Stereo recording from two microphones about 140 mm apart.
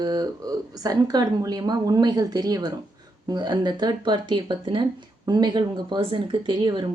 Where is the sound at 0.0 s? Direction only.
30° right (ahead or behind).